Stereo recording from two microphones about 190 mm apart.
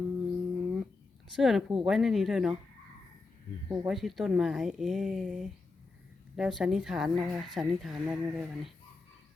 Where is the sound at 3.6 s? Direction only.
15° right (ahead or behind).